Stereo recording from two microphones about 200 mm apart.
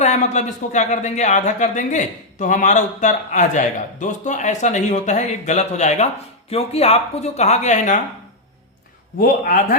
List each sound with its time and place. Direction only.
0.0 s a man's voice: 35° left (ahead or behind)
9.2 s a man's voice: 40° left (ahead or behind)